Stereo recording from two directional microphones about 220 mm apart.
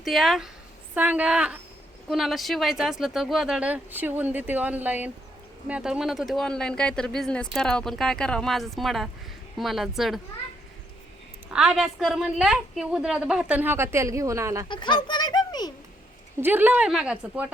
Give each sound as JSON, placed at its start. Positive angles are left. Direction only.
{"t": 0.0, "sound": "speech", "side_deg": 0}
{"t": 11.5, "sound": "speech", "side_deg": 0}
{"t": 14.7, "sound": "a child's voice", "side_deg": 20}
{"t": 16.4, "sound": "speech", "side_deg": -10}